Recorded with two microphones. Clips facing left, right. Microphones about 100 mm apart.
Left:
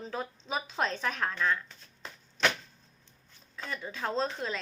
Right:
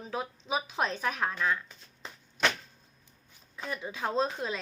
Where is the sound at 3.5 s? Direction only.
15° right (ahead or behind).